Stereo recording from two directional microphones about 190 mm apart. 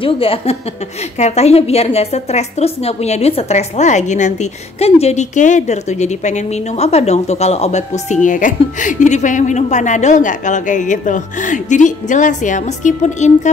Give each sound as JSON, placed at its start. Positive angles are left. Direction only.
{"t": 0.0, "sound": "a woman's voice", "side_deg": 30}